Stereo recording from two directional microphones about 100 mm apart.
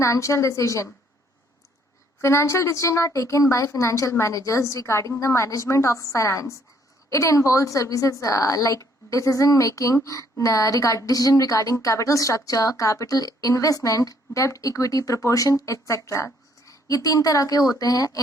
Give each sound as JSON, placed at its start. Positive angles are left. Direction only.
{"t": 0.0, "sound": "a woman's voice", "side_deg": 30}
{"t": 2.2, "sound": "a woman's voice", "side_deg": 30}